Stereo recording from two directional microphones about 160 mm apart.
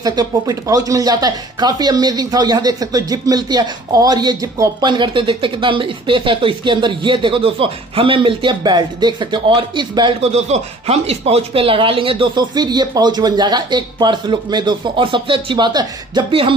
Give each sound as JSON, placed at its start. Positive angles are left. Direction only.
{"t": 0.0, "sound": "speech", "side_deg": -25}
{"t": 10.3, "sound": "speech", "side_deg": -40}